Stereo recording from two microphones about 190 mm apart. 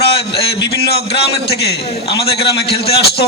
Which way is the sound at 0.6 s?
60° left (ahead or behind).